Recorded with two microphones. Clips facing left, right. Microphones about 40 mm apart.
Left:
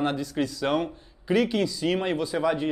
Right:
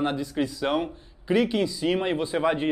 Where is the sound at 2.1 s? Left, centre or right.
Right.